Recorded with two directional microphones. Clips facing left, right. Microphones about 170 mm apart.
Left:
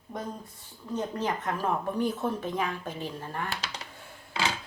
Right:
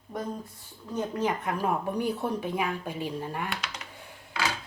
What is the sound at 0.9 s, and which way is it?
A woman's voice, 10° right (ahead or behind).